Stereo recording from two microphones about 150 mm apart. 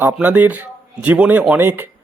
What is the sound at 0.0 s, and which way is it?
Speech, 10° right (ahead or behind).